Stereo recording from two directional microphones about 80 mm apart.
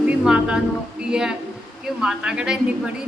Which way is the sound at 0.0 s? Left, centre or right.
Centre.